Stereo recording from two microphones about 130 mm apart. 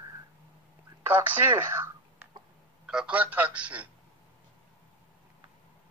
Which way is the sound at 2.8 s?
5° right (ahead or behind).